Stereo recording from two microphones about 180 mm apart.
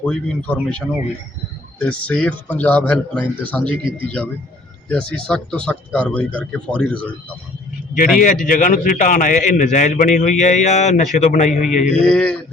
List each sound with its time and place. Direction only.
0.0 s speech: 5° left (ahead or behind)
8.2 s a man's voice: 45° left (ahead or behind)
11.9 s speech: 5° left (ahead or behind)